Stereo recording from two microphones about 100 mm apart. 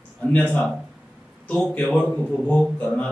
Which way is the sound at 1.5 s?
10° left (ahead or behind).